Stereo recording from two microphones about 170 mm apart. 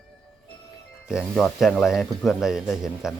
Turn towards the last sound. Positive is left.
turn(degrees=0)  # may be behind; listen again after turning